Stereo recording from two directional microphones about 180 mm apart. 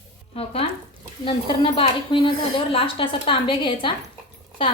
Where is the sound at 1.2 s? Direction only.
30° left (ahead or behind).